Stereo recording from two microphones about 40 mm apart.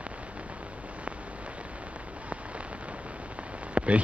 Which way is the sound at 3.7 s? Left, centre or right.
Right.